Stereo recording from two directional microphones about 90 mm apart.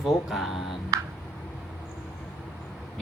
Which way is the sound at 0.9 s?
40° right (ahead or behind).